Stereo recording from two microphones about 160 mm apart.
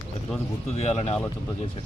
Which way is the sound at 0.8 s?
40° left (ahead or behind).